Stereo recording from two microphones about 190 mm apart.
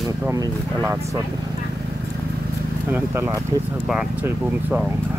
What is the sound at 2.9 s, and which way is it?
Speech, 10° right (ahead or behind).